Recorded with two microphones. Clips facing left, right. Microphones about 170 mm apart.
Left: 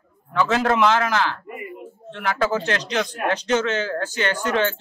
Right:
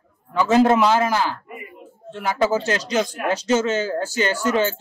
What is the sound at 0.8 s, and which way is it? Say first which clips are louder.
Speech: right 1 dB; 10° right (ahead or behind).